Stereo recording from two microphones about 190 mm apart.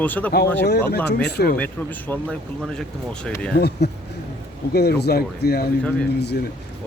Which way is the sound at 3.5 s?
60° left (ahead or behind).